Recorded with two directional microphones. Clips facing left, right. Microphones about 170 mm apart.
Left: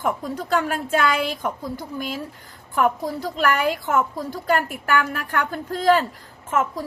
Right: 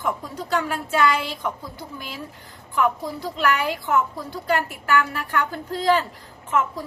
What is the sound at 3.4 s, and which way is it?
A woman's voice, 45° left (ahead or behind).